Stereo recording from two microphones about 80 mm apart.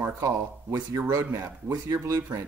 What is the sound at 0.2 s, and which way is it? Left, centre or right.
Speech, right.